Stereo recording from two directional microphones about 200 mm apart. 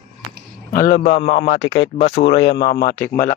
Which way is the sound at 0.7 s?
45° left (ahead or behind).